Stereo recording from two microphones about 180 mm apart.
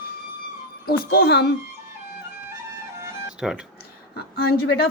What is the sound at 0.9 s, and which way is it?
Speech, 55° left (ahead or behind).